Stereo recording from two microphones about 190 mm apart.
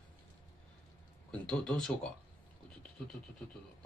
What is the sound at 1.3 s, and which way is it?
Speech, 5° left (ahead or behind).